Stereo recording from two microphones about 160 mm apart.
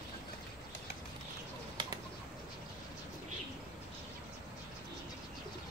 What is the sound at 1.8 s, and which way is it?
Bird, 30° right (ahead or behind).